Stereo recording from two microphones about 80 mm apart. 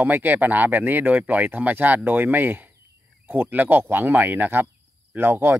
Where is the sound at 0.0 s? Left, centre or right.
Right.